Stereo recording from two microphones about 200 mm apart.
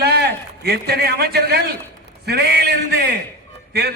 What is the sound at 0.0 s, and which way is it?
A man's voice, 55° right (ahead or behind).